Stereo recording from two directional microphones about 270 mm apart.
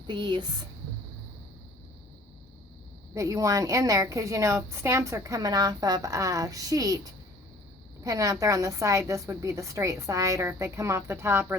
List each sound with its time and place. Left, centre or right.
0.1 s a woman's voice: centre
3.2 s a woman's voice: centre